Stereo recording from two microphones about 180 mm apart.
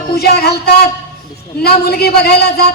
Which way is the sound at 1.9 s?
60° left (ahead or behind).